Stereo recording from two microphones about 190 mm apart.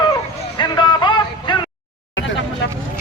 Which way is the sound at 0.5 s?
25° left (ahead or behind).